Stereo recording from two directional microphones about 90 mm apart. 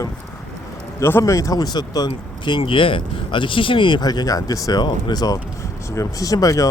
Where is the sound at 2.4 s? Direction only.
70° left (ahead or behind); by 6.7 s 40° left (ahead or behind).